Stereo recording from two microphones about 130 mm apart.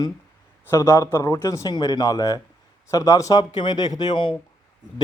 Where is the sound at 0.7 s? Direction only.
25° left (ahead or behind).